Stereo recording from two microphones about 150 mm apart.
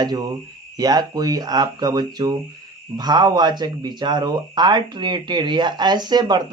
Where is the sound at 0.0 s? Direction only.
30° right (ahead or behind).